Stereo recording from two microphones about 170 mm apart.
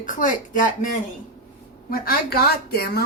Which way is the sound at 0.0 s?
50° left (ahead or behind).